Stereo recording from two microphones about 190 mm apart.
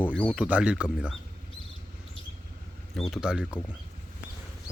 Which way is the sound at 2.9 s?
Centre (ahead or behind).